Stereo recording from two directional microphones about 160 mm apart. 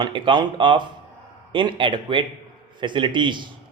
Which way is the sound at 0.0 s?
30° right (ahead or behind).